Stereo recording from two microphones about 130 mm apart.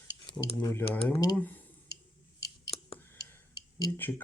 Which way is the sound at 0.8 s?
10° left (ahead or behind).